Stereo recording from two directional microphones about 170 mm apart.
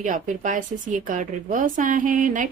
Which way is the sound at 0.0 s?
50° right (ahead or behind).